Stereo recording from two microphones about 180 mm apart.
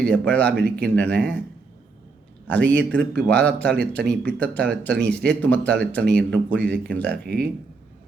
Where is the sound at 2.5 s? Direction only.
10° left (ahead or behind).